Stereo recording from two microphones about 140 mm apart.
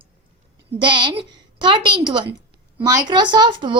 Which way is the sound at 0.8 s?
35° right (ahead or behind).